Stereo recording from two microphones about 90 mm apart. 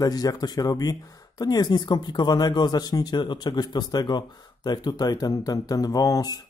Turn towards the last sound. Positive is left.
turn(degrees=45)  # may be behind; listen again after turning